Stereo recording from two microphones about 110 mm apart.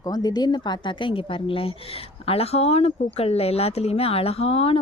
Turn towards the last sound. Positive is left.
turn(degrees=65)  # may be behind; listen again after turning